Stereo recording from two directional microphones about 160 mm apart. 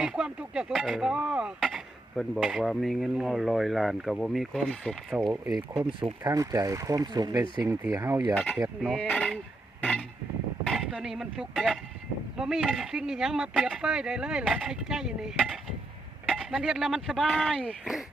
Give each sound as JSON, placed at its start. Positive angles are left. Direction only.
{"t": 0.0, "sound": "speech", "side_deg": -5}
{"t": 5.1, "sound": "speech", "side_deg": -5}
{"t": 6.2, "sound": "speech", "side_deg": -20}
{"t": 8.9, "sound": "speech", "side_deg": 5}
{"t": 10.7, "sound": "speech", "side_deg": 0}